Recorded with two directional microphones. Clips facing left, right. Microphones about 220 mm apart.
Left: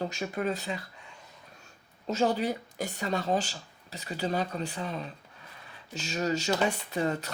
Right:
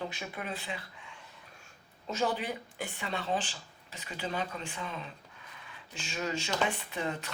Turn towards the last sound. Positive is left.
turn(degrees=40)  # may be behind; listen again after turning